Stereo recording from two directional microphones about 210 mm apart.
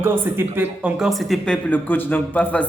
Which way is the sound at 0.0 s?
10° right (ahead or behind).